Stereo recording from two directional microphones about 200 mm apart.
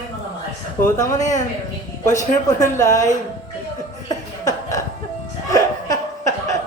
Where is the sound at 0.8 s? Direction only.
15° left (ahead or behind).